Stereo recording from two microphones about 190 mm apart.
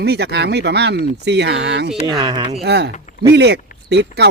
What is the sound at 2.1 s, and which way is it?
Speech, 20° right (ahead or behind).